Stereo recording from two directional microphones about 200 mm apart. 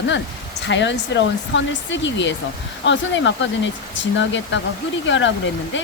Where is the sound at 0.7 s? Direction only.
65° left (ahead or behind).